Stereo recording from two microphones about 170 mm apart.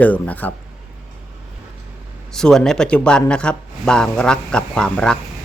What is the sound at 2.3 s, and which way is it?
Speech, 5° left (ahead or behind).